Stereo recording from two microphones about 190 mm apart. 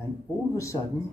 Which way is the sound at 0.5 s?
15° left (ahead or behind).